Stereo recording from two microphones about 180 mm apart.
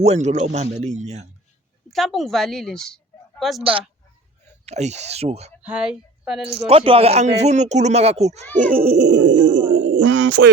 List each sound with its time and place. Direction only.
0.0 s speech: 40° right (ahead or behind)
1.9 s a woman's voice: centre (ahead or behind)
3.6 s speech: 30° right (ahead or behind)
5.6 s speech: 5° right (ahead or behind)
6.7 s speech: 30° right (ahead or behind)
8.7 s a sound: 60° right (ahead or behind); by 9.6 s 80° right
9.7 s speech: 80° right